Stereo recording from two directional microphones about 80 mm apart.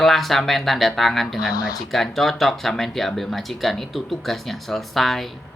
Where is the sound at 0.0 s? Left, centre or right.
Centre.